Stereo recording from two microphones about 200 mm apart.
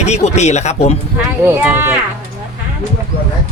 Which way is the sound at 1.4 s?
10° right (ahead or behind).